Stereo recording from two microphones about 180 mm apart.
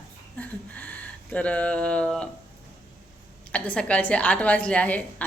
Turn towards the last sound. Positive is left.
turn(degrees=5)  # may be behind; listen again after turning